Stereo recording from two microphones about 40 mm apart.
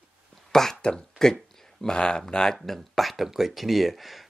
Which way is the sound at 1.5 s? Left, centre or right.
Centre.